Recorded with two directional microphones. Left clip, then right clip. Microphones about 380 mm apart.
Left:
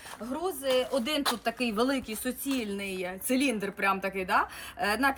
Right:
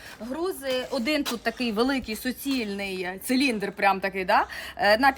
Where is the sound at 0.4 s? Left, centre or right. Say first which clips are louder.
Left 1 dB; centre.